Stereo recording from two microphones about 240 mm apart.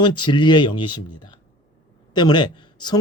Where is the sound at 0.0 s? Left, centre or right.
Centre.